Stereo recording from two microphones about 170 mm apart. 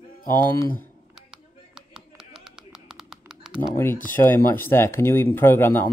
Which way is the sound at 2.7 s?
5° right (ahead or behind).